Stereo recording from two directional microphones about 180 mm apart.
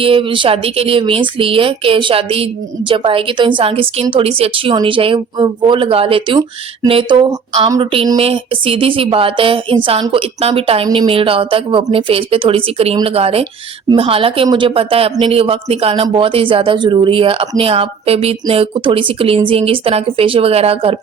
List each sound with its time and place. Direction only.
0.0 s speech: 30° right (ahead or behind)